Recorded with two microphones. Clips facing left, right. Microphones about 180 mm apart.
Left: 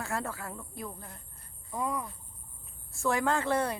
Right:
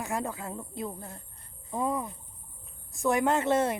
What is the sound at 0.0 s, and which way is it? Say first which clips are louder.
Speech: right 3 dB; 15° right (ahead or behind).